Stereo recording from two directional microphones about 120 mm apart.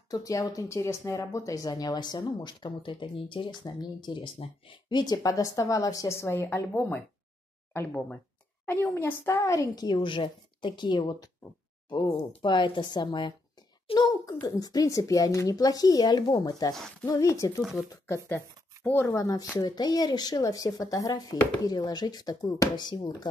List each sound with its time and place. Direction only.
0.1 s speech: 30° left (ahead or behind)
13.8 s a sound: 35° left (ahead or behind)
14.4 s speech: 30° left (ahead or behind)
17.6 s speech: 5° right (ahead or behind)
18.0 s speech: 25° left (ahead or behind)